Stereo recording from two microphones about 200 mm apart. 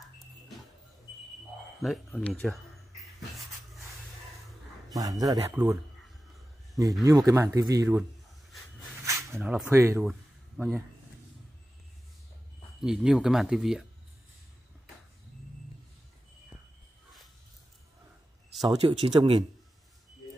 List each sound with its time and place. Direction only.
1.8 s speech: centre (ahead or behind)
4.9 s speech: 15° right (ahead or behind)
6.8 s speech: 15° right (ahead or behind)
9.0 s a sound: 15° right (ahead or behind)
9.4 s speech: centre (ahead or behind)
9.7 s speech: 15° right (ahead or behind)
12.8 s speech: 5° right (ahead or behind)
18.8 s speech: 25° right (ahead or behind)